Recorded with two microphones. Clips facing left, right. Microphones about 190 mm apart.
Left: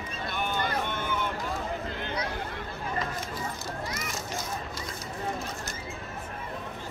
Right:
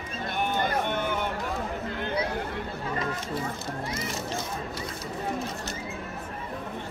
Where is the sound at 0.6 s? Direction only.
55° right (ahead or behind).